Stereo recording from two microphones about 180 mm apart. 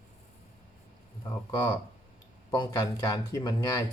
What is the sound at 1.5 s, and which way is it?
Speech, 20° left (ahead or behind).